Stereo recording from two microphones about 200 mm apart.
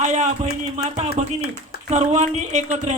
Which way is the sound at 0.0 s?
35° right (ahead or behind).